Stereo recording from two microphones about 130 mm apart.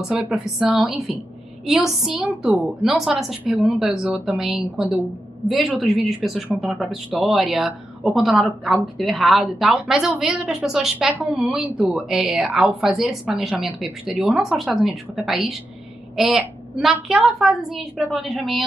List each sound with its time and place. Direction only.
0.1 s speech: 5° right (ahead or behind)